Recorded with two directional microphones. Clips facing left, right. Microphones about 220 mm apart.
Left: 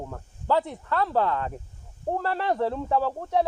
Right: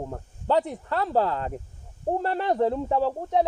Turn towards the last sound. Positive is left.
turn(degrees=-20)  # may be behind; listen again after turning